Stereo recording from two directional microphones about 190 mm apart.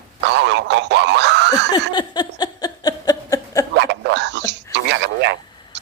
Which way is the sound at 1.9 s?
25° left (ahead or behind).